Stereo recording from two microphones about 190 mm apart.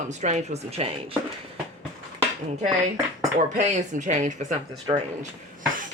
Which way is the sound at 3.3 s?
40° right (ahead or behind).